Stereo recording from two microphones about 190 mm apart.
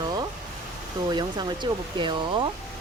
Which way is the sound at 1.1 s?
20° right (ahead or behind).